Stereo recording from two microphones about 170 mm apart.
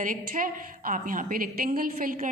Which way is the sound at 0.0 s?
50° right (ahead or behind).